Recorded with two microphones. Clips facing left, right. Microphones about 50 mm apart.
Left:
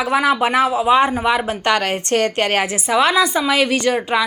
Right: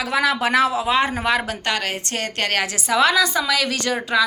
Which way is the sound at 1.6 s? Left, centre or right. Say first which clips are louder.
Left 6 dB; left.